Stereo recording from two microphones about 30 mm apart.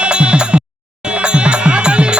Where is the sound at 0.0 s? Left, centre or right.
Right.